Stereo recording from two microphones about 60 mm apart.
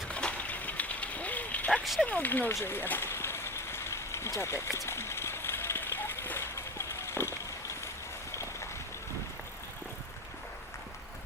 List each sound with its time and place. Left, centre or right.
0.1 s a sound: centre
1.8 s speech: centre
2.0 s speech: left
2.6 s vehicle: left